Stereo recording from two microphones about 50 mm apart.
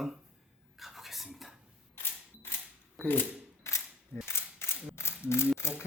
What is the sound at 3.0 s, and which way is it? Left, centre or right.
Speech, left.